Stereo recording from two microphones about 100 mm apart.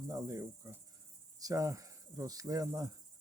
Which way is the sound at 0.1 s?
35° right (ahead or behind).